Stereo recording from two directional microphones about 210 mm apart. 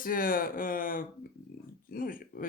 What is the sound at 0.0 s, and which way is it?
Speech, 40° left (ahead or behind).